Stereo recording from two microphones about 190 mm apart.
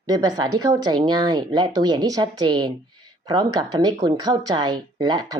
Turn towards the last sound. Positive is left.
turn(degrees=-20)  # may be behind; listen again after turning